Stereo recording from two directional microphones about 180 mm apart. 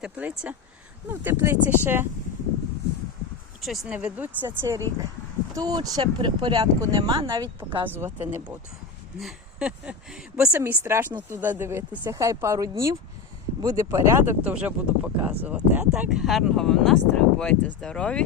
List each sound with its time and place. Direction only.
0.0 s speech: 10° right (ahead or behind)
3.6 s speech: centre (ahead or behind); by 7.9 s 25° right (ahead or behind)
7.9 s speech: 10° right (ahead or behind); by 18.2 s 5° left (ahead or behind)